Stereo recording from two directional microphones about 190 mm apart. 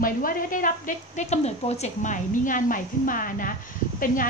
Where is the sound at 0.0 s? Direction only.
45° left (ahead or behind).